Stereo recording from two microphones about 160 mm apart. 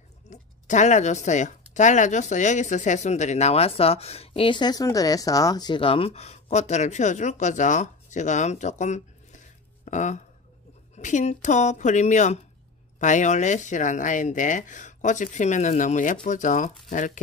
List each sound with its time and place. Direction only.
0.3 s speech: 50° left (ahead or behind)